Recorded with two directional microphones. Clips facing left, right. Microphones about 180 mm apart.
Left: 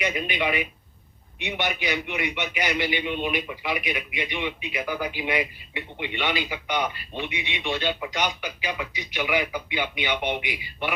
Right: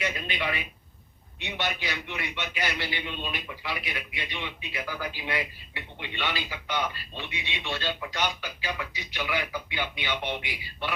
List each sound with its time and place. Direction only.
0.0 s a man's voice: 20° left (ahead or behind)